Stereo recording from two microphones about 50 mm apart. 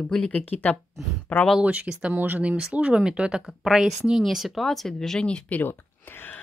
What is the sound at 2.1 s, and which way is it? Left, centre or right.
Speech, right.